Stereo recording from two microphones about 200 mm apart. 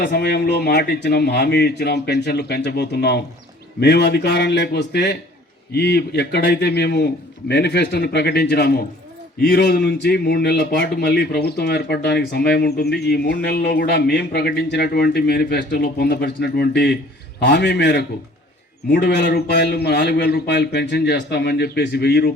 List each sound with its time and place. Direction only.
0.0 s a man's voice: 55° left (ahead or behind)